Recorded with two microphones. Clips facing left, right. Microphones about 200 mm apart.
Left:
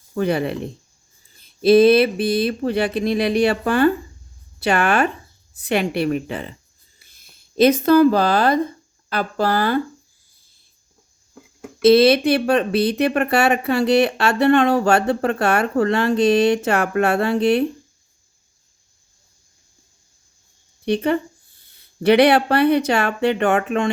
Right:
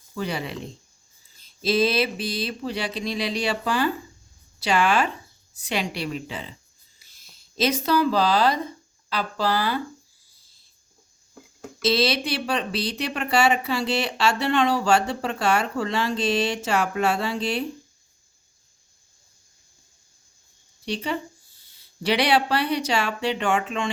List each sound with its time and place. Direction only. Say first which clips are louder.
0.1 s speech: left 9 dB; 55° left (ahead or behind)
11.8 s speech: left 10 dB; 55° left (ahead or behind)
20.8 s speech: left 9 dB; 55° left (ahead or behind)